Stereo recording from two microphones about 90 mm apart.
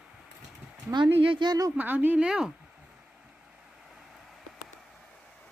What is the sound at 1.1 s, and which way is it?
Speech, 75° right (ahead or behind).